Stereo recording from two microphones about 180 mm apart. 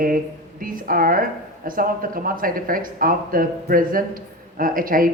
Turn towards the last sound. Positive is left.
turn(degrees=-50)  # may be behind; listen again after turning